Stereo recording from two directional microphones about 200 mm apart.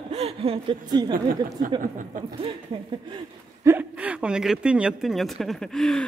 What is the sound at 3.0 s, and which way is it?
Speech, 20° right (ahead or behind).